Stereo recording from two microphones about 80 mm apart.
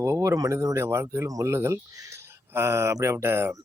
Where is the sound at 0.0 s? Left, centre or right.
Right.